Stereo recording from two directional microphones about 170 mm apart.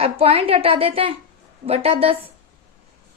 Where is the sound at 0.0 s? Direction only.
35° right (ahead or behind).